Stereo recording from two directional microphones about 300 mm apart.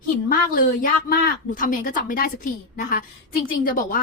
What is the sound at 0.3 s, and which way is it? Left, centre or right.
A woman's voice, left.